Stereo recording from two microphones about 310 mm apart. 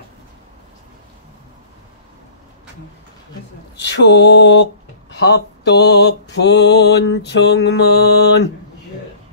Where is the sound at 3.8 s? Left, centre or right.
Left.